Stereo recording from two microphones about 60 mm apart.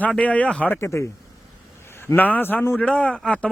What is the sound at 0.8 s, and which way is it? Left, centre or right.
Speech, left.